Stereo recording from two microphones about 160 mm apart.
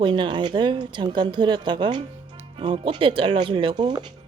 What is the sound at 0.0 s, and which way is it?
Speech, 30° right (ahead or behind).